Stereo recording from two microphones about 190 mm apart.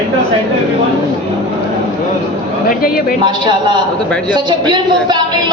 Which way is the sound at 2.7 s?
50° left (ahead or behind).